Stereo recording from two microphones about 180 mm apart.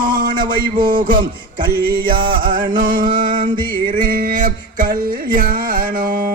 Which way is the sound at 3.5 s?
25° right (ahead or behind).